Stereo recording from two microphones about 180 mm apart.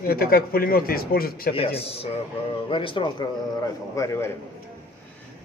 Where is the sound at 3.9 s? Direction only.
15° left (ahead or behind).